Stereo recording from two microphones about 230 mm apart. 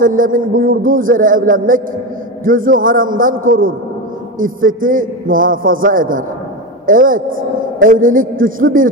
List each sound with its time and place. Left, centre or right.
0.0 s a man's voice: right